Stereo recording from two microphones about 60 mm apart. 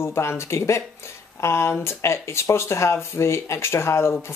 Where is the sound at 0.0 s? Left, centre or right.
Left.